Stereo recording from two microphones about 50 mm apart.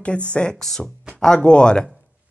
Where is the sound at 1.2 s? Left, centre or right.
Centre.